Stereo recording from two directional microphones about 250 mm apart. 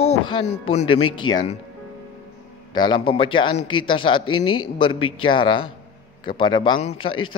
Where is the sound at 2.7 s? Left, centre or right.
Centre.